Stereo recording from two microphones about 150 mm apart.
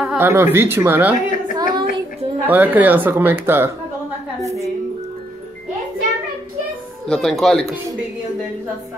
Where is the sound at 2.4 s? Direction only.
10° right (ahead or behind).